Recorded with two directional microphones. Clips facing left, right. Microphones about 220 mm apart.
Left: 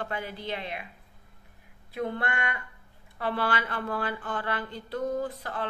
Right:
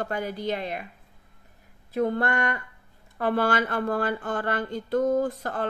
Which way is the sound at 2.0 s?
40° right (ahead or behind).